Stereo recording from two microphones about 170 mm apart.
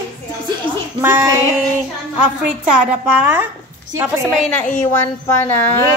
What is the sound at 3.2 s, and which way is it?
Speech, 10° right (ahead or behind).